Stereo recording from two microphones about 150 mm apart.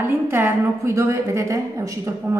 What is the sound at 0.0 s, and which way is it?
A woman's voice, 15° right (ahead or behind).